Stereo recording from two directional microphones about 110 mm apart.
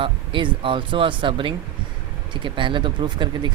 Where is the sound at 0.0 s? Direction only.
50° right (ahead or behind).